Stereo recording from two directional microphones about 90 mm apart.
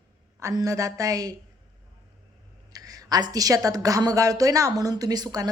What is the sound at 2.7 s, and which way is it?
Speech, 40° right (ahead or behind).